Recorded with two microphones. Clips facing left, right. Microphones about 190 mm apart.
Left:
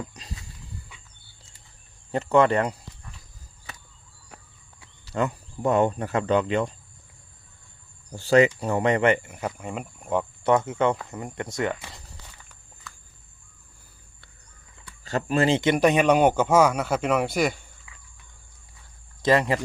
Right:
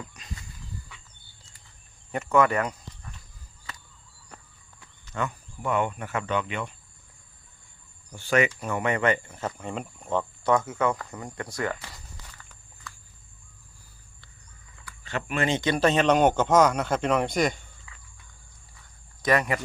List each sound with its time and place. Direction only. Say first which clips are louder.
0.1 s a sound: left 1 dB; 35° left (ahead or behind)
2.1 s speech: left 3 dB; 30° left (ahead or behind)
5.1 s speech: left 5 dB; 35° left (ahead or behind)
8.1 s a man's voice: left 6 dB; 35° left (ahead or behind); by 10.2 s 10° left (ahead or behind)
10.4 s speech: left 3 dB; 25° left (ahead or behind)
15.0 s a man's voice: left 5 dB; 35° left (ahead or behind); by 17.6 s 5° left (ahead or behind)
19.2 s speech: left 3 dB; 25° left (ahead or behind)